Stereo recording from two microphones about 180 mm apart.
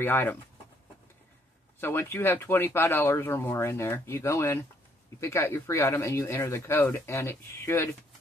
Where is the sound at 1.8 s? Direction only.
15° left (ahead or behind).